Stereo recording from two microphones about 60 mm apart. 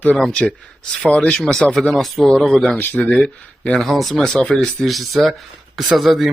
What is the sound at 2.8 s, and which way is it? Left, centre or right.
Speech, left.